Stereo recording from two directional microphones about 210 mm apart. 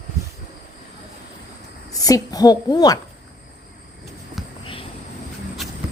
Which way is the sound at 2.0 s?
15° left (ahead or behind).